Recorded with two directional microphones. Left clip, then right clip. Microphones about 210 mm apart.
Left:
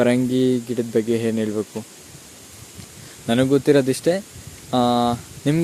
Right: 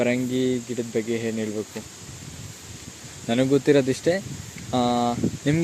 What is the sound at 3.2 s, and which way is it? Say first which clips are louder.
Speech: left 3 dB; 25° left (ahead or behind).